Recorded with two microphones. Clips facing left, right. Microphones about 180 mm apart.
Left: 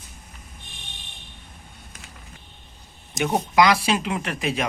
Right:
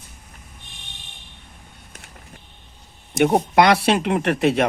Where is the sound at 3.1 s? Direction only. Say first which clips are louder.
Right 4 dB; 60° right (ahead or behind).